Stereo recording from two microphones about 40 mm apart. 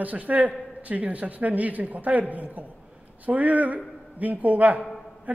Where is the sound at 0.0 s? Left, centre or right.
Right.